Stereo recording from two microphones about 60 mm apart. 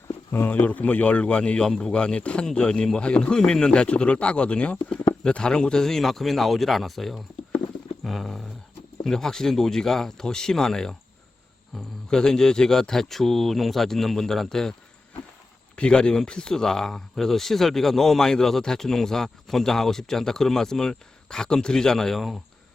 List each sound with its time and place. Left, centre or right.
0.3 s speech: left
0.5 s a man's voice: left; by 7.2 s centre
8.0 s dog: centre
9.0 s speech: centre
12.1 s speech: centre